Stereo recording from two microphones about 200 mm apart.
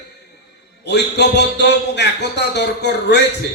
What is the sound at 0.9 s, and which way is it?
Speech, 60° left (ahead or behind).